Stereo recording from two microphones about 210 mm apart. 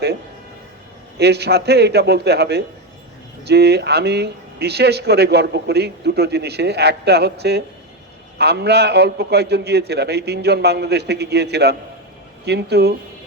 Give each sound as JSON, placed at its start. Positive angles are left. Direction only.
{"t": 1.2, "sound": "speech", "side_deg": -50}